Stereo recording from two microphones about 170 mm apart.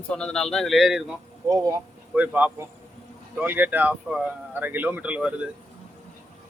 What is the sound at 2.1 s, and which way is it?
Speech, 10° right (ahead or behind).